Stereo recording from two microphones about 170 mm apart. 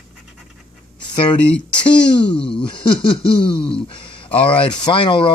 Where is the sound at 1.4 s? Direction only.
5° left (ahead or behind).